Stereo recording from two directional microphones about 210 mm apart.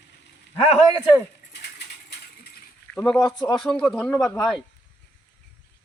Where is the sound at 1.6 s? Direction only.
50° left (ahead or behind).